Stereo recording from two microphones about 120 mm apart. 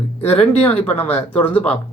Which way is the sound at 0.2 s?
55° left (ahead or behind).